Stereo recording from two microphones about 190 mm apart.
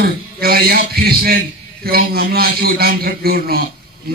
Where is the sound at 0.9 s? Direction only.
55° right (ahead or behind).